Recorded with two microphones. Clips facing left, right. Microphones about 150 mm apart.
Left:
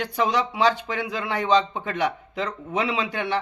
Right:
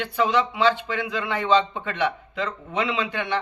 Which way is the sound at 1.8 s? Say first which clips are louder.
Even; 40° left (ahead or behind).